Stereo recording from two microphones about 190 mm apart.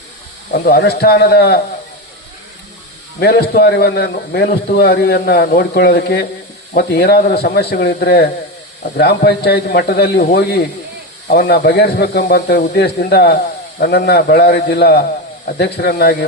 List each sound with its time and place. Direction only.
0.6 s a man's voice: 60° left (ahead or behind)
3.2 s a man's voice: 55° left (ahead or behind)